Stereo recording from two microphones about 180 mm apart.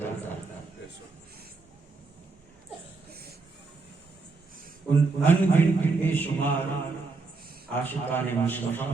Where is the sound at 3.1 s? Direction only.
60° right (ahead or behind).